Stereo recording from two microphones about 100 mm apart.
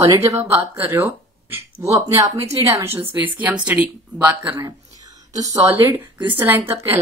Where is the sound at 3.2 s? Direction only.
15° right (ahead or behind).